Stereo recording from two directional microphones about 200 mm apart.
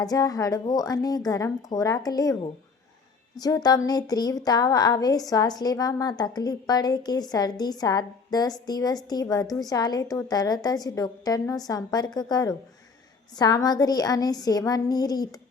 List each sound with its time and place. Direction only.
0.0 s a woman's voice: 20° left (ahead or behind)